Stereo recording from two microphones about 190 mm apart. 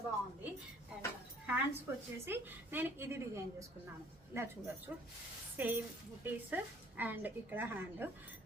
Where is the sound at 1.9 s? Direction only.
10° right (ahead or behind).